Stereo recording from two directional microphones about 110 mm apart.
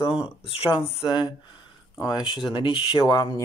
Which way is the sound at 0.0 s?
55° left (ahead or behind).